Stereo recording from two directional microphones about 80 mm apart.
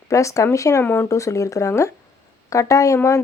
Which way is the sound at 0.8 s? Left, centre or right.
Left.